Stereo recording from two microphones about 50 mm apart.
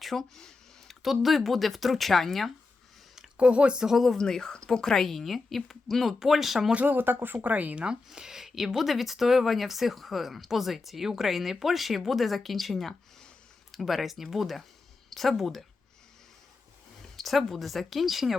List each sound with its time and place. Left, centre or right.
0.0 s a sound: centre
1.0 s speech: centre
3.3 s speech: right
3.8 s speech: centre
4.2 s a woman's voice: centre
6.8 s speech: right
7.3 s speech: right
7.9 s speech: centre
17.2 s speech: centre